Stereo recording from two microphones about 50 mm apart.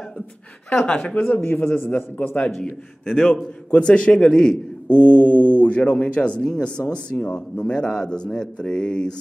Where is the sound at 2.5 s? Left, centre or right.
Centre.